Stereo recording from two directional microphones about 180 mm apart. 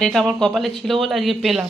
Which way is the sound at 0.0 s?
5° left (ahead or behind).